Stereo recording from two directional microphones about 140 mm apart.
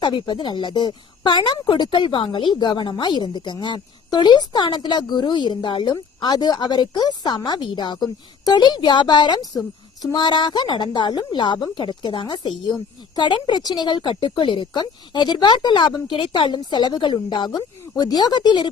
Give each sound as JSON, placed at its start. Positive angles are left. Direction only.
{"t": 0.0, "sound": "speech", "side_deg": 30}